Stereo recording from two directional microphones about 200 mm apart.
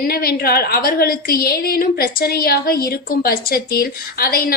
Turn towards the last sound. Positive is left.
turn(degrees=50)  # may be behind; listen again after turning